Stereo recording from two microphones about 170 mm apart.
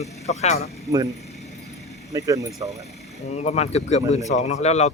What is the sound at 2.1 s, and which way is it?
Speech, 20° right (ahead or behind).